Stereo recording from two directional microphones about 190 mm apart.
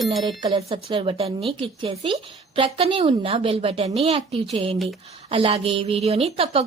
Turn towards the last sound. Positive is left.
turn(degrees=-30)  # may be behind; listen again after turning